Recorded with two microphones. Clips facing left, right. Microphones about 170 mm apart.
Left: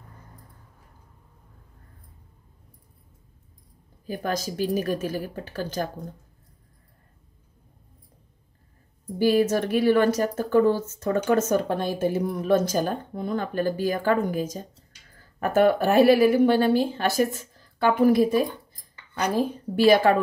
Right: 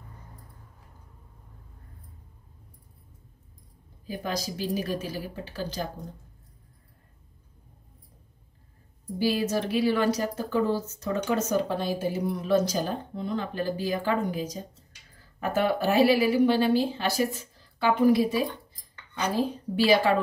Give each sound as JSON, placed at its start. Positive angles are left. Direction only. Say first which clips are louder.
{"t": 4.1, "sound": "speech", "louder": "left 3 dB", "side_deg": 50}
{"t": 9.2, "sound": "speech", "louder": "left 5 dB", "side_deg": 50}